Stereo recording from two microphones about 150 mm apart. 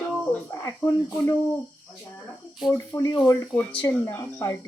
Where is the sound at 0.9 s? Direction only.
20° left (ahead or behind).